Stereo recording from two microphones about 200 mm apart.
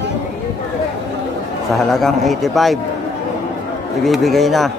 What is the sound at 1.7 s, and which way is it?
Speech, centre (ahead or behind).